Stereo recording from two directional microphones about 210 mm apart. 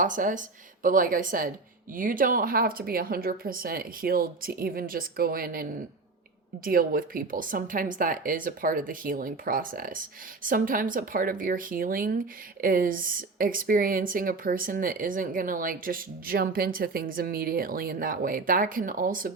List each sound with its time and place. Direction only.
0.0 s speech: 40° right (ahead or behind)
6.7 s speech: 45° right (ahead or behind)